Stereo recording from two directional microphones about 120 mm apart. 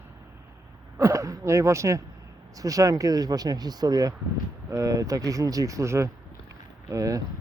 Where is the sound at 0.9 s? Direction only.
25° right (ahead or behind).